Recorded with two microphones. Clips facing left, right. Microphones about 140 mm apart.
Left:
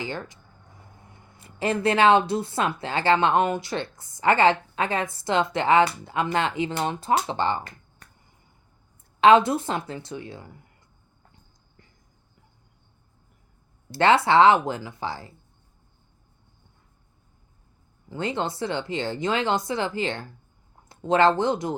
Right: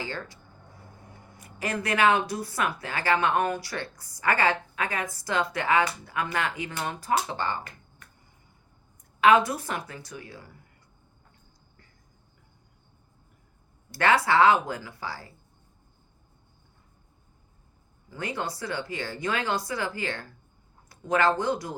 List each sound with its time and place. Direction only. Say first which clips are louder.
0.0 s speech: left 3 dB; 20° left (ahead or behind)
1.4 s speech: left 6 dB; 25° left (ahead or behind)
9.2 s speech: left 4 dB; 25° left (ahead or behind)
13.9 s speech: left 4 dB; 25° left (ahead or behind)
18.1 s speech: left 5 dB; 25° left (ahead or behind)